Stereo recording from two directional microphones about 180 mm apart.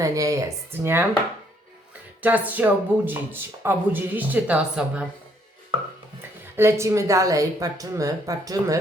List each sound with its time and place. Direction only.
0.0 s speech: 20° right (ahead or behind)
2.2 s speech: 10° right (ahead or behind)
6.6 s speech: 15° right (ahead or behind)